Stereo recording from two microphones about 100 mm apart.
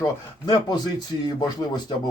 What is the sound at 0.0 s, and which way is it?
Speech, 45° left (ahead or behind).